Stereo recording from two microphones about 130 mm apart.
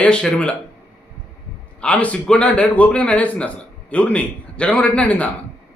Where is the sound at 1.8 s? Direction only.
10° left (ahead or behind).